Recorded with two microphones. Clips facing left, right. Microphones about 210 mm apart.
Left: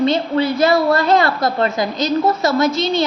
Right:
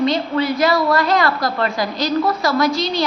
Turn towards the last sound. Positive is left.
turn(degrees=25)  # may be behind; listen again after turning